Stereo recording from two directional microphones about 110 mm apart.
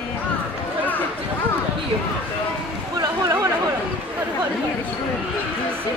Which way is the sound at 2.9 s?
35° right (ahead or behind).